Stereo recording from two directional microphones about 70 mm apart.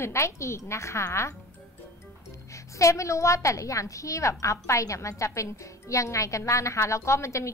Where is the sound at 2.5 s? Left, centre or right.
Left.